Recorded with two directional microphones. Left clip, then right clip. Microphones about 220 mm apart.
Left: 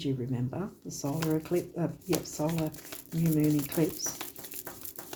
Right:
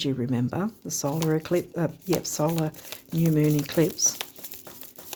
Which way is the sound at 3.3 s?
50° right (ahead or behind).